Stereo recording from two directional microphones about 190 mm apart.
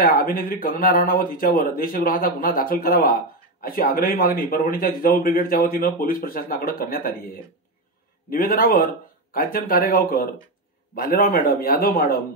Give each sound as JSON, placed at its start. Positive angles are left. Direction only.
{"t": 0.0, "sound": "speech", "side_deg": 50}
{"t": 8.3, "sound": "speech", "side_deg": 50}